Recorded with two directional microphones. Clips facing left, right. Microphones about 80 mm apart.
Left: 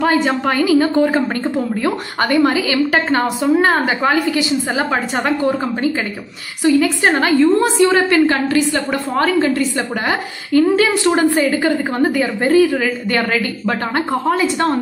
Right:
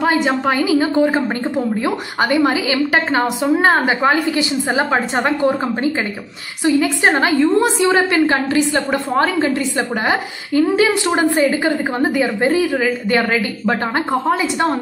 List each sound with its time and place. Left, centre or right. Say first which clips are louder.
0.0 s a woman's voice: left 1 dB; centre